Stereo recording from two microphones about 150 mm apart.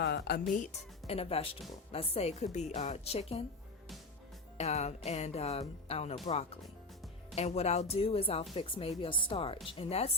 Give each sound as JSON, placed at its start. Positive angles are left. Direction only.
{"t": 0.0, "sound": "speech", "side_deg": 90}
{"t": 4.5, "sound": "speech", "side_deg": 45}
{"t": 7.3, "sound": "speech", "side_deg": 45}